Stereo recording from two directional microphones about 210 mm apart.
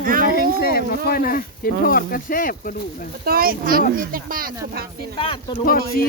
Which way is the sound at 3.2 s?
45° right (ahead or behind).